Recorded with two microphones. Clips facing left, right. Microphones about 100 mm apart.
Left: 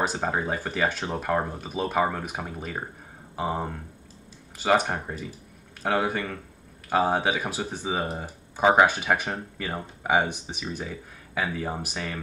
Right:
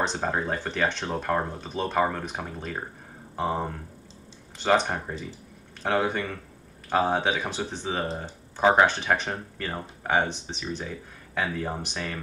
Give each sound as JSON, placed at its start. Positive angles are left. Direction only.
{"t": 0.0, "sound": "speech", "side_deg": 5}